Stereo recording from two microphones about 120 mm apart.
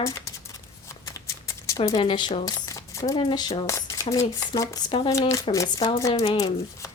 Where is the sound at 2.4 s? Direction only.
25° left (ahead or behind).